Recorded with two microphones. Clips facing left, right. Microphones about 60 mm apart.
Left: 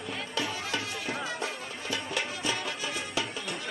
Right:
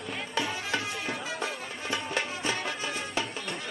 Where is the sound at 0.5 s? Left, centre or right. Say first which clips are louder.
Right 2 dB; right.